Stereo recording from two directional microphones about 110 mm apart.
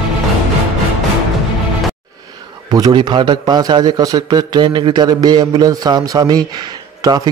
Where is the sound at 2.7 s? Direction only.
40° right (ahead or behind).